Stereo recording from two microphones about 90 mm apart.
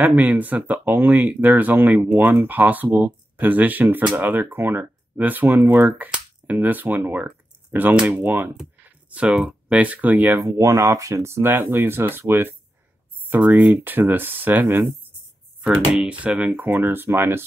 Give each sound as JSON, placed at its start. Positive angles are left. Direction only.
{"t": 0.0, "sound": "speech", "side_deg": -15}
{"t": 10.6, "sound": "speech", "side_deg": -35}
{"t": 15.6, "sound": "speech", "side_deg": -10}